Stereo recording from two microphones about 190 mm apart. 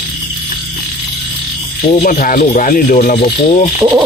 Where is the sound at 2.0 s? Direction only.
45° left (ahead or behind).